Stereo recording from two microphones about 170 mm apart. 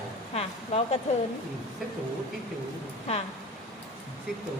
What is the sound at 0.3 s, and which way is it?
Speech, 40° left (ahead or behind).